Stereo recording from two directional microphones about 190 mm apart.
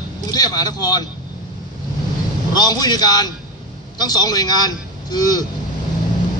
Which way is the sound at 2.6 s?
20° left (ahead or behind).